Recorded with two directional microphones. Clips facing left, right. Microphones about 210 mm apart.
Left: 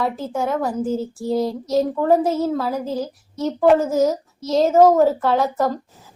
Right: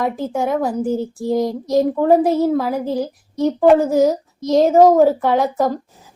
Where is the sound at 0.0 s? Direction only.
15° right (ahead or behind).